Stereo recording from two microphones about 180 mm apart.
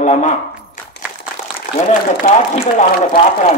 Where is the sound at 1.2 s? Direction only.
45° left (ahead or behind).